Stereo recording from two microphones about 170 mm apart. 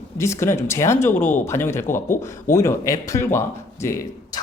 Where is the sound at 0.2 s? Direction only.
15° left (ahead or behind).